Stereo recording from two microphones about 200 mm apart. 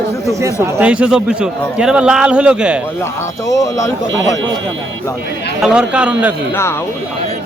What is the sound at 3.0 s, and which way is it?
Speech, 15° left (ahead or behind).